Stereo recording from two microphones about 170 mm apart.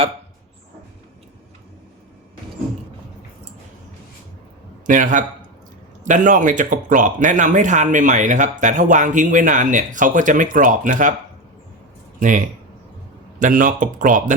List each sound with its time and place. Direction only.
4.9 s speech: 50° right (ahead or behind)
13.4 s speech: 50° right (ahead or behind)